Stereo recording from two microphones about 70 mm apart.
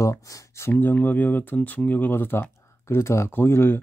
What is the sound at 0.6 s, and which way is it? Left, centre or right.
Speech, left.